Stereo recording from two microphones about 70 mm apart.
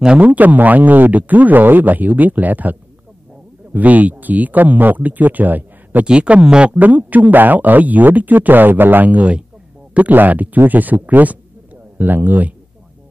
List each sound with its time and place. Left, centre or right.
0.0 s speech: centre